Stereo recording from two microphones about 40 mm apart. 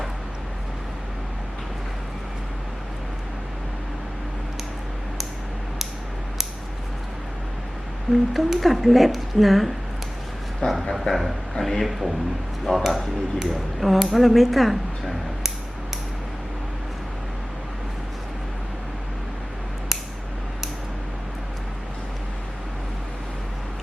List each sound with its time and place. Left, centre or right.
8.1 s speech: centre
10.6 s speech: left
11.1 s a man's voice: centre
11.5 s speech: centre